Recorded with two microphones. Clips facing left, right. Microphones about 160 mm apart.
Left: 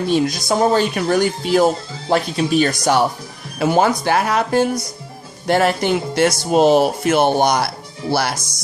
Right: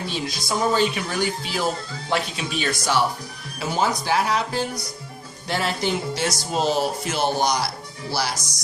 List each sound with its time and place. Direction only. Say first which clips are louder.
0.1 s speech: left 12 dB; 50° left (ahead or behind)
3.6 s speech: left 8 dB; 60° left (ahead or behind)